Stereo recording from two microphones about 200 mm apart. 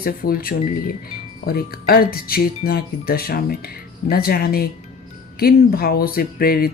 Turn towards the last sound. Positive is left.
turn(degrees=50)  # may be behind; listen again after turning